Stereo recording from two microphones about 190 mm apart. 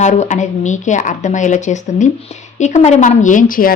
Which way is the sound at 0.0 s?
35° left (ahead or behind).